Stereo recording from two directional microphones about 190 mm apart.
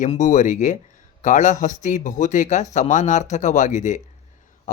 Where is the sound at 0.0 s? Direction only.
40° left (ahead or behind).